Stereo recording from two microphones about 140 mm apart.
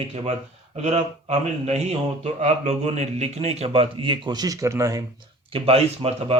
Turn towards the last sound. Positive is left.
turn(degrees=-45)  # may be behind; listen again after turning